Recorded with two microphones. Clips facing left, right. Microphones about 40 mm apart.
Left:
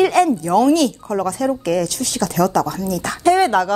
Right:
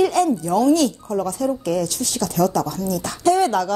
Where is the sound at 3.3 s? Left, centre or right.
Left.